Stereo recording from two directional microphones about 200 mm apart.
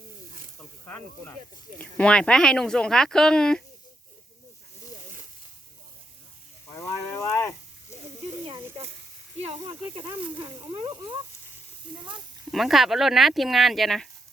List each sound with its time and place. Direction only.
0.9 s speech: 5° left (ahead or behind)
6.7 s livestock: 15° left (ahead or behind)
9.4 s speech: 25° right (ahead or behind)
12.5 s speech: centre (ahead or behind)